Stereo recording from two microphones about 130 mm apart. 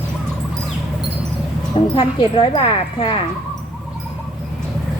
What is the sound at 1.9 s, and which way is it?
Speech, 40° left (ahead or behind).